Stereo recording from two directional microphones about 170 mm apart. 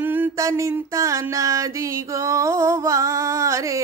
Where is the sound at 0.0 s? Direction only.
10° right (ahead or behind).